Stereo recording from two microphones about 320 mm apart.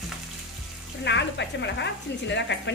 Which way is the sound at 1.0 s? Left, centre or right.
Left.